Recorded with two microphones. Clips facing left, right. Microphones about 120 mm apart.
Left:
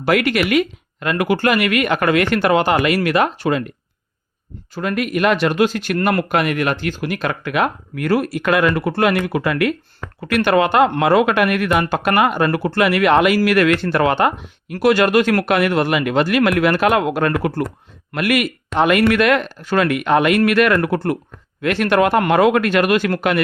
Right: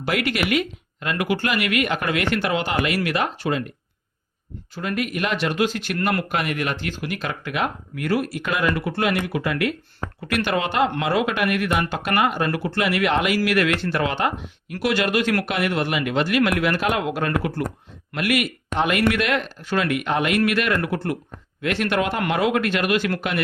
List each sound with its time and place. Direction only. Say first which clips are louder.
0.0 s speech: left 6 dB; 60° left (ahead or behind)
4.7 s speech: left 5 dB; 55° left (ahead or behind)
14.7 s speech: left 7 dB; 45° left (ahead or behind)